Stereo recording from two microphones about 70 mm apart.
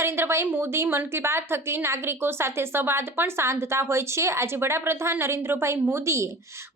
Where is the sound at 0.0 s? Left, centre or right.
Right.